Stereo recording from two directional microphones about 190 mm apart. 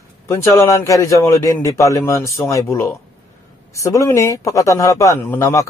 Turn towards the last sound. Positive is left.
turn(degrees=15)  # may be behind; listen again after turning